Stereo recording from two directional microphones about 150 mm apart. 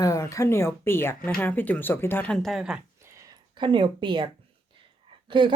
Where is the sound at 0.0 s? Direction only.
20° left (ahead or behind); by 2.8 s 5° right (ahead or behind).